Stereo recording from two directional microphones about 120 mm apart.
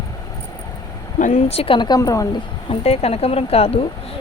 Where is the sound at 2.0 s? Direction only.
25° left (ahead or behind).